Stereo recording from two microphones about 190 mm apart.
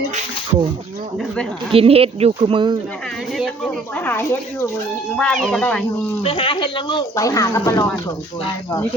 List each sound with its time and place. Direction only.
1.7 s speech: 30° right (ahead or behind)
3.3 s speech: centre (ahead or behind)
6.2 s speech: 30° left (ahead or behind)